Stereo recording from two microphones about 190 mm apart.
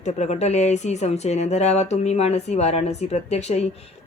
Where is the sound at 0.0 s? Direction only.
35° left (ahead or behind).